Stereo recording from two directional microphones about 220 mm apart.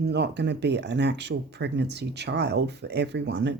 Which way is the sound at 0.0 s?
50° right (ahead or behind).